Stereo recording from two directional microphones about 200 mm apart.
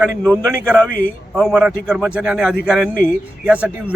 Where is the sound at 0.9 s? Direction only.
45° left (ahead or behind).